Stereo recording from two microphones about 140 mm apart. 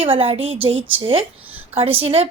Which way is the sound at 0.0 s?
40° right (ahead or behind).